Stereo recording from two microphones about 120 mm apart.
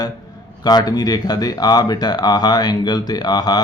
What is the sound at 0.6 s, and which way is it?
Speech, 35° left (ahead or behind).